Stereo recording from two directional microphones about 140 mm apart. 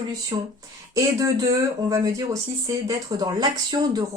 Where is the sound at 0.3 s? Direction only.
35° right (ahead or behind).